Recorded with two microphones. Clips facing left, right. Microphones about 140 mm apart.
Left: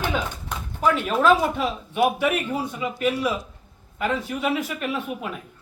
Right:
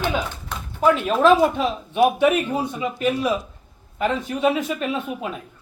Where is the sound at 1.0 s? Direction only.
20° right (ahead or behind).